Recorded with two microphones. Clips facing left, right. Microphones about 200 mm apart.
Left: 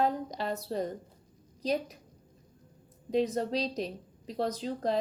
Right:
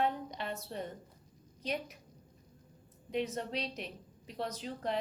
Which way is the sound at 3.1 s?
35° left (ahead or behind).